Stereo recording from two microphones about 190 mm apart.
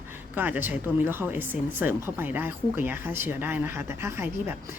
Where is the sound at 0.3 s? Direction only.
10° right (ahead or behind).